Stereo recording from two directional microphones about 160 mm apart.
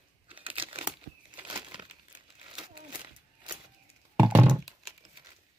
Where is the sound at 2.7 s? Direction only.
30° right (ahead or behind).